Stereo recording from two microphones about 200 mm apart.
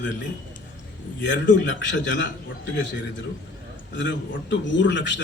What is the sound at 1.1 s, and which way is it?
A man's voice, 65° left (ahead or behind).